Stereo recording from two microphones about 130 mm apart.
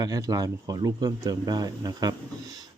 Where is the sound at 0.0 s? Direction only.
30° right (ahead or behind).